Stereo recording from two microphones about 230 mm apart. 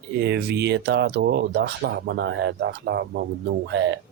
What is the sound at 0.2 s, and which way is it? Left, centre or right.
Speech, right.